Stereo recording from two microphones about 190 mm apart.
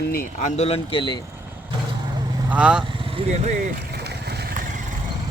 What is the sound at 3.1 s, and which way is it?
Speech, 30° right (ahead or behind).